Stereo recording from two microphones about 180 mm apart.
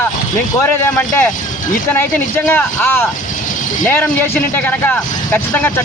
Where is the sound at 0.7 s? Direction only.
10° left (ahead or behind).